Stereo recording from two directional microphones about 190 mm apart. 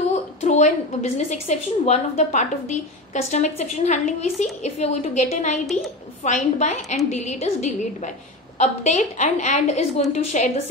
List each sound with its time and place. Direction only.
0.1 s a woman's voice: 35° left (ahead or behind)